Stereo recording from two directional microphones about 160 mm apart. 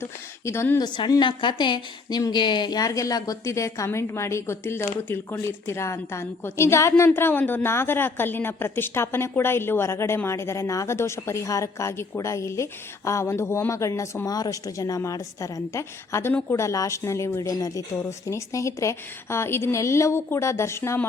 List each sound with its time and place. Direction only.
0.0 s a woman's voice: 15° left (ahead or behind)
0.9 s a woman's voice: 30° left (ahead or behind)